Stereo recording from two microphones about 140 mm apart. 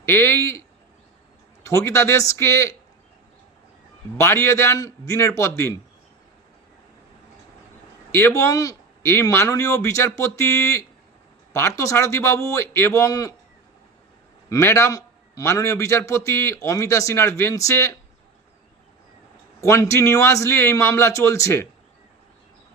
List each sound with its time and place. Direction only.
0.0 s a man's voice: 20° left (ahead or behind)
1.6 s a man's voice: 20° left (ahead or behind)
4.2 s a man's voice: 20° left (ahead or behind)
8.1 s a man's voice: 20° left (ahead or behind)
14.5 s a man's voice: 20° left (ahead or behind)
19.6 s a man's voice: 20° left (ahead or behind)